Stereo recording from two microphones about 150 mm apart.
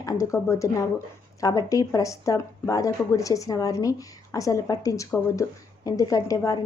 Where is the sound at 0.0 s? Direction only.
20° left (ahead or behind).